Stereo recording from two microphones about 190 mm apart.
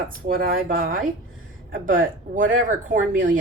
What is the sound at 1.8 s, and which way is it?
Speech, 45° right (ahead or behind).